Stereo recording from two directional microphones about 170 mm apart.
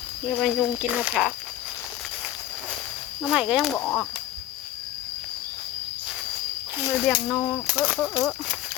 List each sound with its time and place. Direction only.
0.3 s speech: centre (ahead or behind)
3.2 s speech: 5° right (ahead or behind)
3.8 s speech: 15° left (ahead or behind)
6.9 s speech: centre (ahead or behind)
7.9 s speech: 15° left (ahead or behind)